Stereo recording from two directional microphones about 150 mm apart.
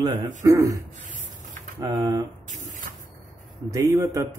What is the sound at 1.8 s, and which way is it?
Speech, 25° right (ahead or behind).